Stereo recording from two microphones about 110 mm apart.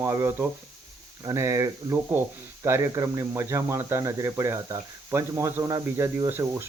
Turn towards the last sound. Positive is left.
turn(degrees=-20)  # may be behind; listen again after turning